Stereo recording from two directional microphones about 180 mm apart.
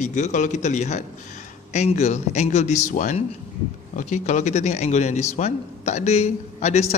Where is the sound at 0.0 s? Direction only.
40° left (ahead or behind).